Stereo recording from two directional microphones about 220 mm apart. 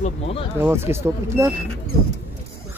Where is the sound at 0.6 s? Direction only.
10° right (ahead or behind).